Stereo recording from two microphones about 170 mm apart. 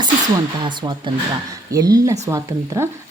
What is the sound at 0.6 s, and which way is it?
Speech, 25° right (ahead or behind).